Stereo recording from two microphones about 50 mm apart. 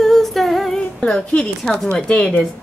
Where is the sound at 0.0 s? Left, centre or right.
Centre.